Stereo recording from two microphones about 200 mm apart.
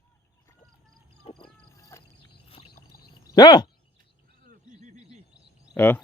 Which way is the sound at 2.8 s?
50° left (ahead or behind).